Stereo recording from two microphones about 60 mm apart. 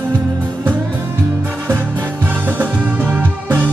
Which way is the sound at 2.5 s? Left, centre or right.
Right.